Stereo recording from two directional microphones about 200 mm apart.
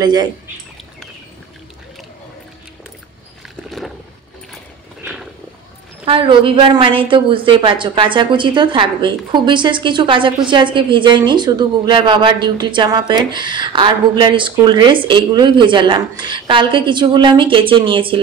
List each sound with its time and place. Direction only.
0.0 s a woman's voice: 20° right (ahead or behind)
6.0 s a woman's voice: 25° right (ahead or behind)